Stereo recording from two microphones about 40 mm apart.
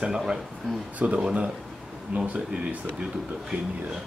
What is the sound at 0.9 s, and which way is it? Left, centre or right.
Speech, right.